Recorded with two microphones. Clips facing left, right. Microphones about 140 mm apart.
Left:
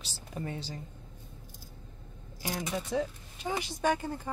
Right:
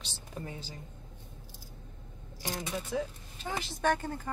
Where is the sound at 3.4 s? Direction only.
15° left (ahead or behind).